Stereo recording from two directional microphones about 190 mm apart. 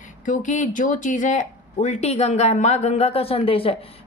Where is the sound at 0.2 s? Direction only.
40° left (ahead or behind).